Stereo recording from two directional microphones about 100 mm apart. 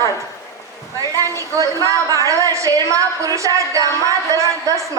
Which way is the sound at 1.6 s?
35° right (ahead or behind).